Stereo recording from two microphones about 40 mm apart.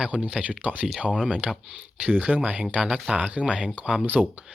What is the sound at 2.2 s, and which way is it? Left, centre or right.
Speech, right.